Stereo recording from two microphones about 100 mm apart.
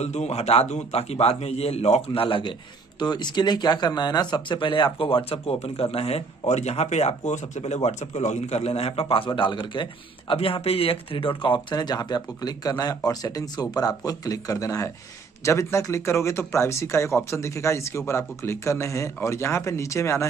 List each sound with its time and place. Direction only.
0.0 s a man's voice: 90° left
2.2 s speech: 55° left (ahead or behind)
3.0 s a man's voice: 45° left (ahead or behind); by 20.2 s 30° left (ahead or behind)